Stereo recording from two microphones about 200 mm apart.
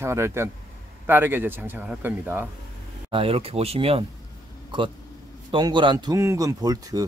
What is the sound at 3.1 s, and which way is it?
A man's voice, 30° right (ahead or behind).